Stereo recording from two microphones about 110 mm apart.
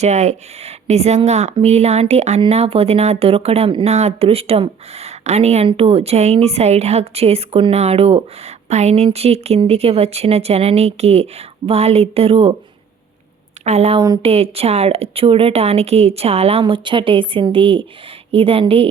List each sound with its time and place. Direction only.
0.0 s speech: 90° right
1.6 s a woman's voice: 80° right
2.5 s a woman's voice: 65° right (ahead or behind)
3.8 s a woman's voice: 75° right (ahead or behind)
5.6 s a woman's voice: 60° right (ahead or behind); by 9.0 s 85° right
9.1 s a woman's voice: 70° right (ahead or behind)
13.7 s a woman's voice: 80° right
14.2 s a woman's voice: 65° right (ahead or behind)